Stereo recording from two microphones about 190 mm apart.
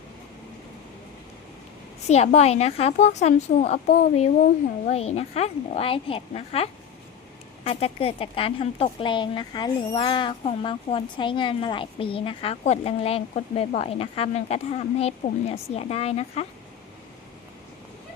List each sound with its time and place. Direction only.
2.0 s a woman's voice: 35° left (ahead or behind)
4.9 s a woman's voice: 35° left (ahead or behind)